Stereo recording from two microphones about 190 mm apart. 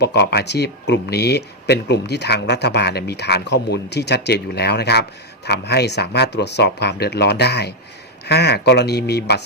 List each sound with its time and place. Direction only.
0.0 s speech: 60° left (ahead or behind)